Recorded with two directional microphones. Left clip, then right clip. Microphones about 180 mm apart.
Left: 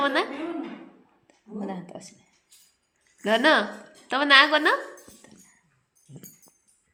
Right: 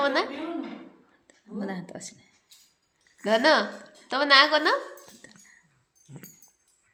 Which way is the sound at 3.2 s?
10° left (ahead or behind).